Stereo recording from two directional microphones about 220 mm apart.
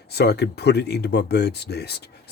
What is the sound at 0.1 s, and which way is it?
Speech, 50° left (ahead or behind).